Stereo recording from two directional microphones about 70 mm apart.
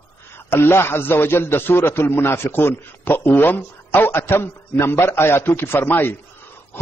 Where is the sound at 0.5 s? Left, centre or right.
Left.